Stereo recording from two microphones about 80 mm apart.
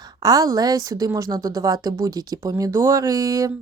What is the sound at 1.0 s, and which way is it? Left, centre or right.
Speech, right.